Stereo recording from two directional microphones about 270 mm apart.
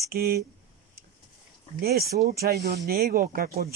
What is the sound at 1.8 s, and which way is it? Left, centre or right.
Speech, right.